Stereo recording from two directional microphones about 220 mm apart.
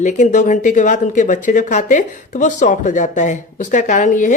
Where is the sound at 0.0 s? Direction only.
35° left (ahead or behind).